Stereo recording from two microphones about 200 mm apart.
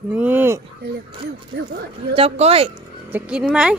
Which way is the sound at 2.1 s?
30° right (ahead or behind).